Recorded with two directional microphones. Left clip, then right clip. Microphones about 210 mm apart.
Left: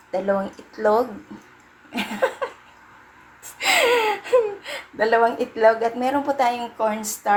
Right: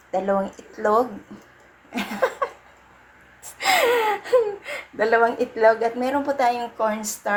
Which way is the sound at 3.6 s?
5° right (ahead or behind).